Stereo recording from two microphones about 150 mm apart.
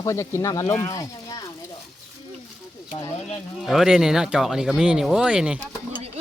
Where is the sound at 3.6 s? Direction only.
5° right (ahead or behind).